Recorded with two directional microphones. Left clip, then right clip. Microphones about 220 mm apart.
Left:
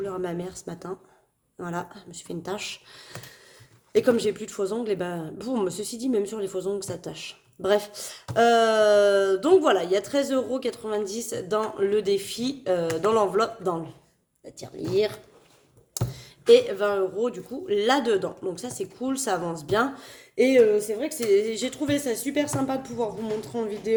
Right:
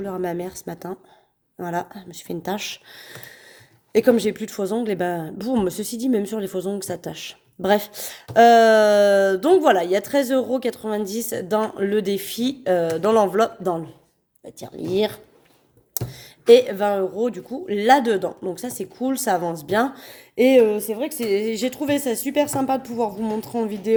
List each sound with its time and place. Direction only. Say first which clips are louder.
0.0 s speech: right 4 dB; 30° right (ahead or behind)